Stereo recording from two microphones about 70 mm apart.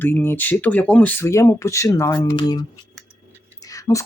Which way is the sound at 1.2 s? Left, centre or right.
Left.